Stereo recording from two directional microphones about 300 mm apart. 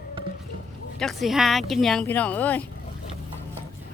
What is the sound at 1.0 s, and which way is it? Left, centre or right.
Speech, centre.